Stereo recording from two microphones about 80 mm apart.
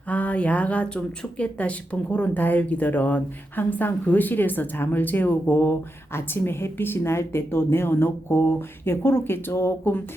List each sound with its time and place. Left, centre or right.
0.1 s speech: centre